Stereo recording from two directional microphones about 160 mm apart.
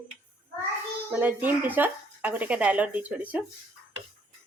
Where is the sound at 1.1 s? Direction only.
10° right (ahead or behind).